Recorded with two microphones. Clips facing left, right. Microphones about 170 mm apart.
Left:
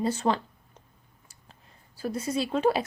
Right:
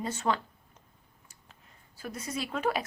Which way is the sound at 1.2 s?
35° left (ahead or behind).